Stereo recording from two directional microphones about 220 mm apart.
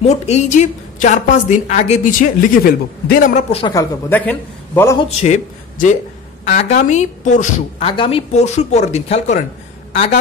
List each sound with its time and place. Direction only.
0.0 s a woman's voice: 30° left (ahead or behind)
3.5 s a woman's voice: 20° left (ahead or behind)
4.1 s a man's voice: 5° left (ahead or behind)
5.2 s a man's voice: 35° left (ahead or behind)